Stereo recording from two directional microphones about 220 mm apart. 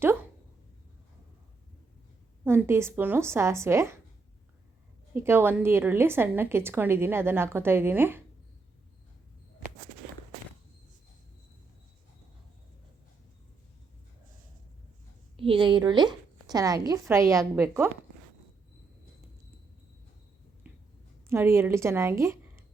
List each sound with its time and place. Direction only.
2.4 s a woman's voice: 10° right (ahead or behind)
5.1 s a woman's voice: 10° right (ahead or behind)
15.4 s a woman's voice: 25° right (ahead or behind)
20.7 s a sound: 5° right (ahead or behind)
21.2 s a woman's voice: 10° right (ahead or behind)